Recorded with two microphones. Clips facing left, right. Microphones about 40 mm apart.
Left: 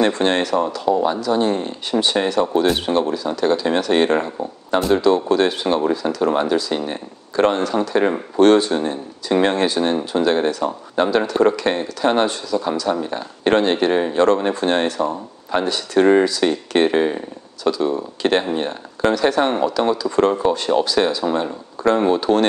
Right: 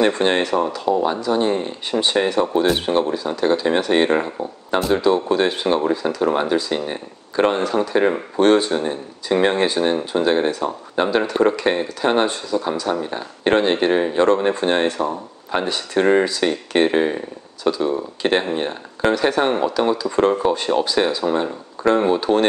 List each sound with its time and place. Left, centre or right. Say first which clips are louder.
0.2 s speech: even; centre
0.8 s speech: left 2 dB; centre
1.1 s speech: even; centre
4.6 s speech: left 2 dB; centre